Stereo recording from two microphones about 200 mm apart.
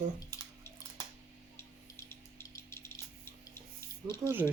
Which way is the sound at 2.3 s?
15° left (ahead or behind).